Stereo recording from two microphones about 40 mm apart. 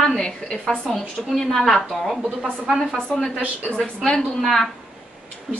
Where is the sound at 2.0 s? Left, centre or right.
Centre.